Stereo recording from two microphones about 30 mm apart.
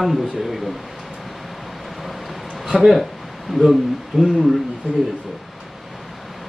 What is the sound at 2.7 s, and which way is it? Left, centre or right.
Speech, centre.